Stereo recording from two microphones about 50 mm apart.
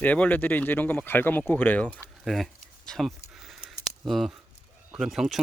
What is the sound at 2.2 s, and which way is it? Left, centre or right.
Speech, centre.